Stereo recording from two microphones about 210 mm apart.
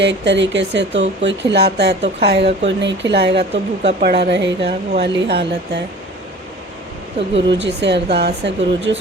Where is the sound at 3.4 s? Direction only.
30° right (ahead or behind).